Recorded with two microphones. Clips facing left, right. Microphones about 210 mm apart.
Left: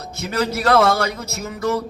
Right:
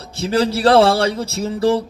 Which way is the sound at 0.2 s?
30° right (ahead or behind).